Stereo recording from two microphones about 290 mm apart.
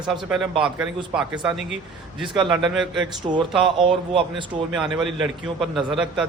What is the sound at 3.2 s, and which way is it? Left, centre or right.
Speech, centre.